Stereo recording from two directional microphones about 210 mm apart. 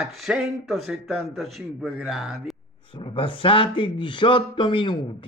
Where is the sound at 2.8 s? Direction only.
25° left (ahead or behind).